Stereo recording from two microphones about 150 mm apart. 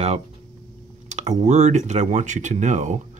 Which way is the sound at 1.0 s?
50° right (ahead or behind).